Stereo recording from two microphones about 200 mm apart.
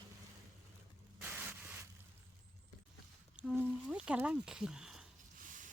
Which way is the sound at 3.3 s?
5° right (ahead or behind).